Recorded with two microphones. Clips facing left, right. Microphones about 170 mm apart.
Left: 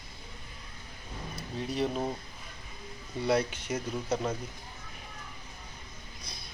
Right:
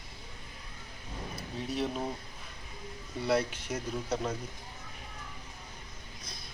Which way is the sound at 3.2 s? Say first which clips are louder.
Left 1 dB; centre (ahead or behind).